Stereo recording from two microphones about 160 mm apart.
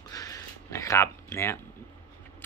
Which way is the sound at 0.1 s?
20° left (ahead or behind).